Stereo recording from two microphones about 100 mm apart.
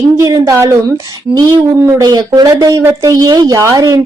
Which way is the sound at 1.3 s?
15° right (ahead or behind).